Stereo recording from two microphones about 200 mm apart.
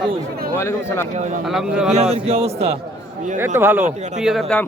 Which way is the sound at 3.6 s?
10° right (ahead or behind).